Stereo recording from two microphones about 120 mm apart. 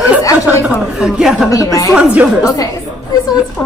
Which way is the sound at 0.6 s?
5° right (ahead or behind).